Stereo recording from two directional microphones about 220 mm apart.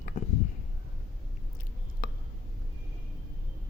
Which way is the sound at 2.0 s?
40° left (ahead or behind).